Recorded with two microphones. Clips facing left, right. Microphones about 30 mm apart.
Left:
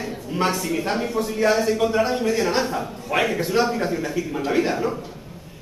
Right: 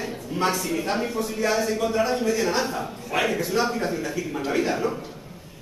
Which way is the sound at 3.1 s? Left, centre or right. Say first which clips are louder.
Left 3 dB; left.